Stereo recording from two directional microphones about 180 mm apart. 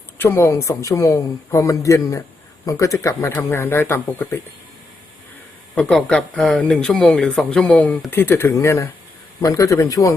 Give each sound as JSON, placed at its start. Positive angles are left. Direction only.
{"t": 0.2, "sound": "speech", "side_deg": 15}
{"t": 5.7, "sound": "speech", "side_deg": 5}